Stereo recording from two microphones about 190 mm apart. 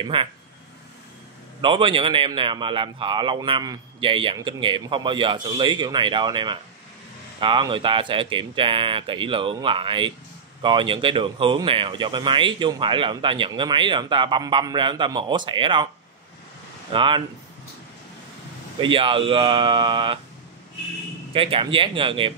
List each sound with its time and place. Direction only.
0.0 s speech: 25° right (ahead or behind)
1.6 s speech: 25° right (ahead or behind)
16.9 s speech: 25° right (ahead or behind)
18.8 s speech: 25° right (ahead or behind)
21.3 s speech: 30° right (ahead or behind)